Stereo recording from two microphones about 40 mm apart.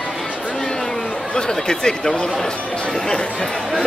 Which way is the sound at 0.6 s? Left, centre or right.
Centre.